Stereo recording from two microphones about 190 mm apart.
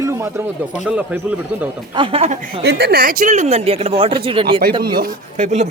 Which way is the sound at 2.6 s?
60° right (ahead or behind).